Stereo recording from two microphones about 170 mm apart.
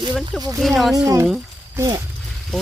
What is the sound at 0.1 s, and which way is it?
Speech, centre (ahead or behind).